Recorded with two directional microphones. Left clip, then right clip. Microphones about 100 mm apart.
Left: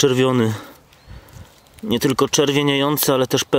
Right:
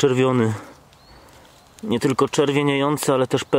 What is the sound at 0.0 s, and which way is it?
Speech, 30° left (ahead or behind).